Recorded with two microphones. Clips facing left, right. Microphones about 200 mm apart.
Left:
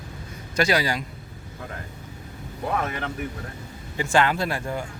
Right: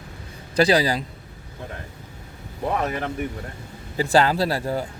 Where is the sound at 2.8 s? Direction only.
35° right (ahead or behind).